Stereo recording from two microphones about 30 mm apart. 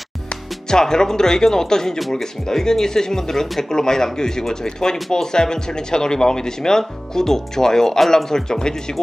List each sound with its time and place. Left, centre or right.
0.7 s speech: left
2.0 s speech: centre
2.5 s speech: centre